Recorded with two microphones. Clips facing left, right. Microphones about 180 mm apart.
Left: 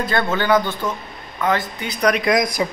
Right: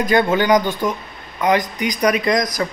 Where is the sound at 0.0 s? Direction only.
15° right (ahead or behind).